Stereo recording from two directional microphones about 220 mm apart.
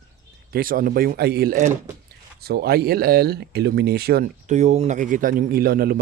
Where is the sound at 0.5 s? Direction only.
40° right (ahead or behind).